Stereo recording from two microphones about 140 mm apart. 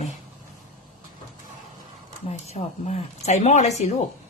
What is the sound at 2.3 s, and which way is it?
Speech, 50° left (ahead or behind).